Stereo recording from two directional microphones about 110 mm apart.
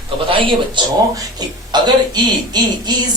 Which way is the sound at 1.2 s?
40° right (ahead or behind).